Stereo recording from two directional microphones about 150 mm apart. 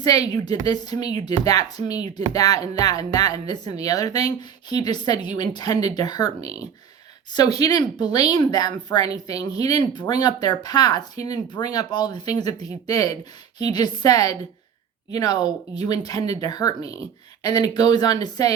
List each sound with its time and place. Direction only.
0.0 s speech: 25° left (ahead or behind)